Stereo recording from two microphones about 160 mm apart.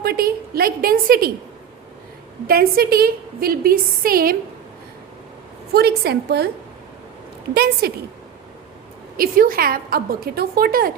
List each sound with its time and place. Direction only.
0.0 s a woman's voice: 70° right (ahead or behind)
2.5 s a woman's voice: 70° right (ahead or behind)
5.7 s a woman's voice: 85° right
7.5 s a woman's voice: 75° right (ahead or behind)
9.1 s a woman's voice: 65° right (ahead or behind)